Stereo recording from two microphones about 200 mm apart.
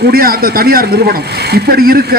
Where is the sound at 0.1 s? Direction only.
45° right (ahead or behind).